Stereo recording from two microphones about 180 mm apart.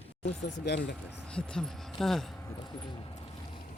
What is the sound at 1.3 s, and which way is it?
Speech, 5° left (ahead or behind).